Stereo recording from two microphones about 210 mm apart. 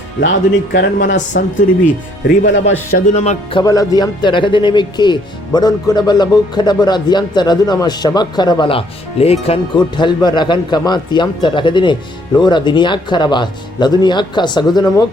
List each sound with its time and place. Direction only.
0.2 s speech: 50° left (ahead or behind)
2.9 s speech: 30° left (ahead or behind)
3.6 s speech: 15° left (ahead or behind)